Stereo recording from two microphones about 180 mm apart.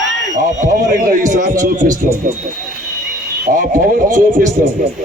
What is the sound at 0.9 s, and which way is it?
Speech, 50° right (ahead or behind).